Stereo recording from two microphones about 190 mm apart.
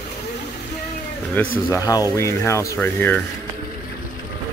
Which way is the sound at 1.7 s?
20° left (ahead or behind).